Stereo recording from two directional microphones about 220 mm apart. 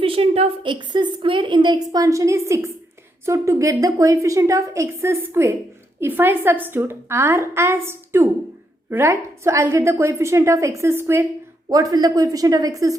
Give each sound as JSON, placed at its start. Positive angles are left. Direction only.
{"t": 0.0, "sound": "a woman's voice", "side_deg": -25}